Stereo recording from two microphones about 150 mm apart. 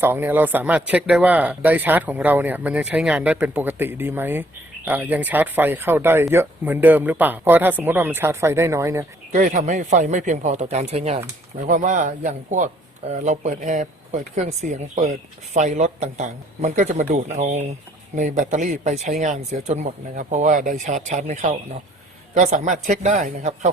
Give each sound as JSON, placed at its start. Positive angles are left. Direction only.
{"t": 0.0, "sound": "speech", "side_deg": -15}
{"t": 9.3, "sound": "speech", "side_deg": -60}
{"t": 11.6, "sound": "a man's voice", "side_deg": -60}